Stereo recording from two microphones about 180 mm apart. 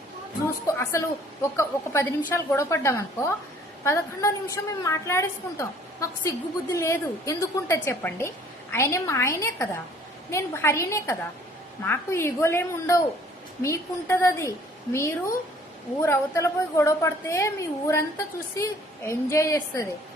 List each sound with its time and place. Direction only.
0.4 s a woman's voice: 15° left (ahead or behind)